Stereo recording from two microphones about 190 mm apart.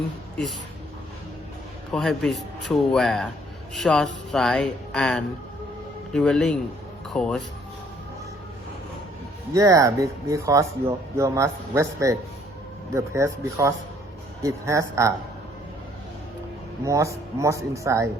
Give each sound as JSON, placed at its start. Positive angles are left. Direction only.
{"t": 1.9, "sound": "speech", "side_deg": 0}
{"t": 9.5, "sound": "speech", "side_deg": -15}
{"t": 16.8, "sound": "speech", "side_deg": -15}